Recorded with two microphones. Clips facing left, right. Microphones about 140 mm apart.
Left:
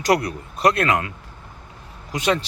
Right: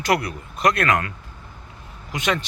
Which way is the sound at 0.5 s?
30° left (ahead or behind).